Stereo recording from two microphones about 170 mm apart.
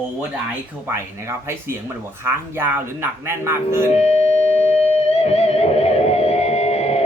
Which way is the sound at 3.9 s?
40° left (ahead or behind).